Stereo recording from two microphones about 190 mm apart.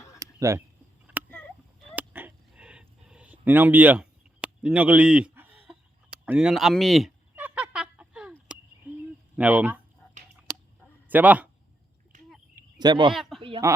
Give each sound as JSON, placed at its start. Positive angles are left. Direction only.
{"t": 0.2, "sound": "a sound", "side_deg": -15}
{"t": 6.2, "sound": "fowl", "side_deg": -5}
{"t": 8.9, "sound": "a sound", "side_deg": -10}
{"t": 9.3, "sound": "speech", "side_deg": -10}
{"t": 11.1, "sound": "a man's voice", "side_deg": -10}
{"t": 12.1, "sound": "a sound", "side_deg": -40}
{"t": 12.8, "sound": "speech", "side_deg": -25}
{"t": 13.1, "sound": "speech", "side_deg": 0}
{"t": 13.6, "sound": "a man's voice", "side_deg": -15}